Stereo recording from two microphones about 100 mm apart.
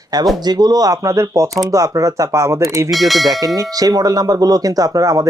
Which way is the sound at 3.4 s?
35° right (ahead or behind).